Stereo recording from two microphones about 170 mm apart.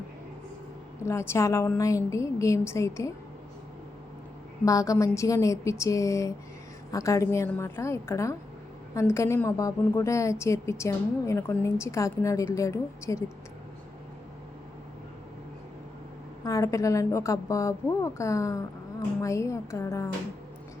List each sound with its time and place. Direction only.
1.0 s a woman's voice: 15° left (ahead or behind)
4.6 s a woman's voice: 20° left (ahead or behind)
16.4 s a woman's voice: 20° left (ahead or behind)